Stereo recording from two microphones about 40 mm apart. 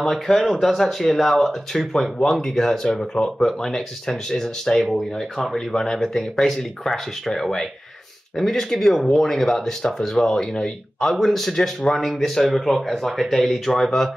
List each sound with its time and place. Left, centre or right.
0.0 s speech: centre
8.4 s speech: centre
9.9 s speech: centre